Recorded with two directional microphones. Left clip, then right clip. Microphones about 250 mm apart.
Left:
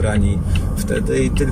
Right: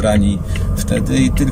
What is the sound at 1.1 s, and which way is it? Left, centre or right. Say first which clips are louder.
Speech: right 1 dB; centre.